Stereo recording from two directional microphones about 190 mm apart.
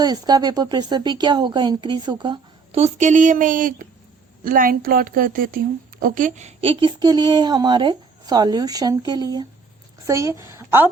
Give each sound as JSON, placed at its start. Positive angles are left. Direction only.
{"t": 0.0, "sound": "a woman's voice", "side_deg": -20}